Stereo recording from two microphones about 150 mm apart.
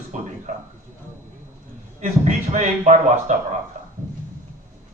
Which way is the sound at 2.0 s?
50° right (ahead or behind).